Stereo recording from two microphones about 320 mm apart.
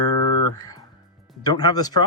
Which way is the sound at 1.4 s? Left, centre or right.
Centre.